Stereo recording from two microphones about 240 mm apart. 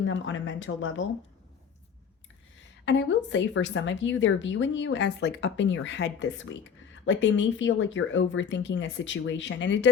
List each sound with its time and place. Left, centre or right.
0.0 s a woman's voice: left
2.8 s a woman's voice: left